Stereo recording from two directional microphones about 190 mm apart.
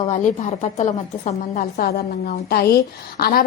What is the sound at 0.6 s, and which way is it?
A woman's voice, 40° left (ahead or behind).